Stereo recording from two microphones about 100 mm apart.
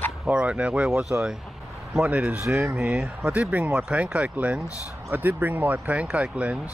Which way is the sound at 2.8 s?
10° right (ahead or behind).